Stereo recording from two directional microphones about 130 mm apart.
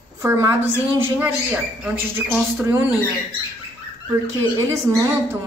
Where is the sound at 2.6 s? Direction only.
20° right (ahead or behind).